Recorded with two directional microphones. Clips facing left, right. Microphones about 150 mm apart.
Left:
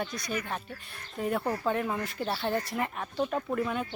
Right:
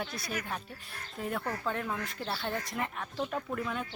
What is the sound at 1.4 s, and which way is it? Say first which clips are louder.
Speech: left 4 dB; 20° left (ahead or behind).